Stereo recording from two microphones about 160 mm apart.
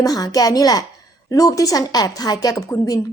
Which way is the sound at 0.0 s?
25° left (ahead or behind).